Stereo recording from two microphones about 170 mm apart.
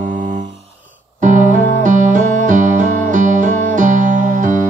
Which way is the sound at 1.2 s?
50° right (ahead or behind).